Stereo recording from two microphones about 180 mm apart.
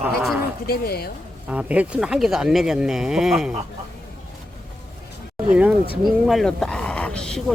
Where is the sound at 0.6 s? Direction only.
60° left (ahead or behind).